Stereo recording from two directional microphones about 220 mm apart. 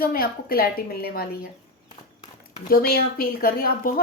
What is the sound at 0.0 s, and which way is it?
A woman's voice, 40° left (ahead or behind).